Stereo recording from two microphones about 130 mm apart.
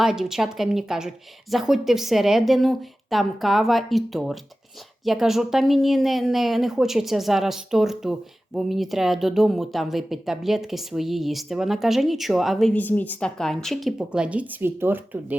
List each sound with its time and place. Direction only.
0.0 s speech: 5° right (ahead or behind)
12.7 s speech: 15° left (ahead or behind); by 15.4 s 15° right (ahead or behind)